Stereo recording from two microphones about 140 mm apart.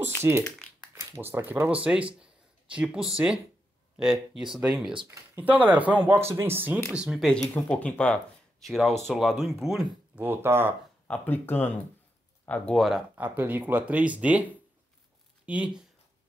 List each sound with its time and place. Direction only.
0.9 s speech: 20° right (ahead or behind)
2.1 s a sound: 5° right (ahead or behind)
3.9 s speech: centre (ahead or behind)
7.0 s speech: centre (ahead or behind)
10.2 s speech: 15° right (ahead or behind)
11.1 s speech: 15° left (ahead or behind)
13.1 s speech: 10° right (ahead or behind)
15.4 s speech: 10° right (ahead or behind)